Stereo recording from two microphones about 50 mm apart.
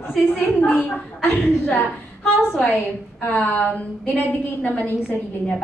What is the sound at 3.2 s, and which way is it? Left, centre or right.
A woman's voice, left.